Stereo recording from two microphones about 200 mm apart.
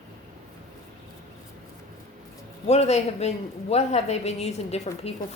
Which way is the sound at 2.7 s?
35° left (ahead or behind).